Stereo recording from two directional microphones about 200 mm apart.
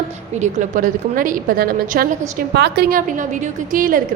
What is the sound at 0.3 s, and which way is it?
A woman's voice, 35° right (ahead or behind).